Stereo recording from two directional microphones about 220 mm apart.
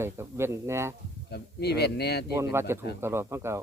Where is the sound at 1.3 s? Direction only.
50° left (ahead or behind).